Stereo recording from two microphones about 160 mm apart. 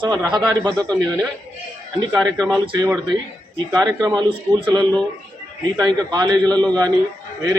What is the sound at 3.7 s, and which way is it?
A man's voice, 25° right (ahead or behind).